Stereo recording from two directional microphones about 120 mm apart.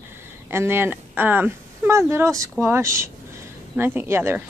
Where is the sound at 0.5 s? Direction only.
20° right (ahead or behind).